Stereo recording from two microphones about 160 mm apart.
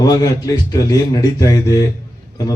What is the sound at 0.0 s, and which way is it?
A man's voice, 25° left (ahead or behind).